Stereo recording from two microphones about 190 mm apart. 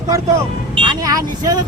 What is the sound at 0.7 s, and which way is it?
Speech, 25° right (ahead or behind).